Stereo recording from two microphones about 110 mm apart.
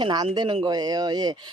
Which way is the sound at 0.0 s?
40° right (ahead or behind).